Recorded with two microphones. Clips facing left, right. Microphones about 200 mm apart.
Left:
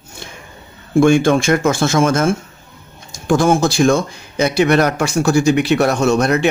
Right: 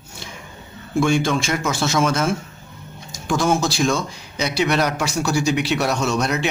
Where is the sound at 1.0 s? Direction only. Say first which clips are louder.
Left 7 dB; 55° left (ahead or behind).